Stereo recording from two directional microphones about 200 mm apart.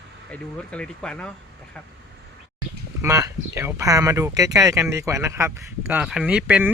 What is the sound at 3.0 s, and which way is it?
Speech, 15° right (ahead or behind).